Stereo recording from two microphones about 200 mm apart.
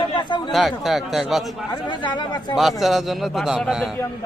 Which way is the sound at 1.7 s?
25° left (ahead or behind).